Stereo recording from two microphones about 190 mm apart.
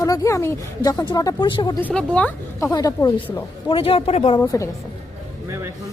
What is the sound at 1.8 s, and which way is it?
Speech, 5° left (ahead or behind).